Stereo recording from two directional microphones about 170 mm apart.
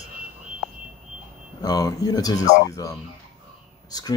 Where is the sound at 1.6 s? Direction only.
20° left (ahead or behind).